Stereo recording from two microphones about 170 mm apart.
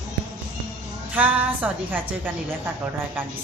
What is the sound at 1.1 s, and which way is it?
Speech, 10° right (ahead or behind).